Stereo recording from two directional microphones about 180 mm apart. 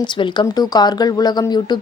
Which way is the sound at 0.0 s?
25° left (ahead or behind).